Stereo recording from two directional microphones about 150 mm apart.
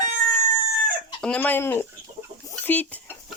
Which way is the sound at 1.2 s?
10° left (ahead or behind).